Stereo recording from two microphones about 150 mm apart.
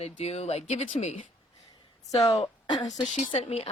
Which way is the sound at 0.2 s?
45° left (ahead or behind).